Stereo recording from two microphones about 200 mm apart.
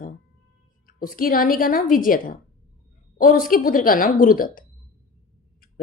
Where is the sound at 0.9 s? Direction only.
45° left (ahead or behind).